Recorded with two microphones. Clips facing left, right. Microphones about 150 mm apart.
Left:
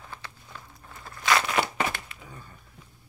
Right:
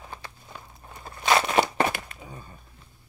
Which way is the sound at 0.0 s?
20° right (ahead or behind).